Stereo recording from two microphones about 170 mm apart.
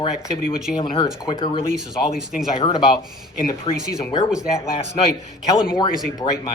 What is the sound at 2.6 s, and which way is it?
Speech, 35° left (ahead or behind).